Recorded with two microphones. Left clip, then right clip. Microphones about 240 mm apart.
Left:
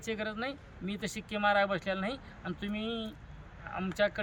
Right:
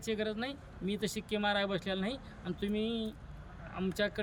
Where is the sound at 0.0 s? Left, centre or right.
Centre.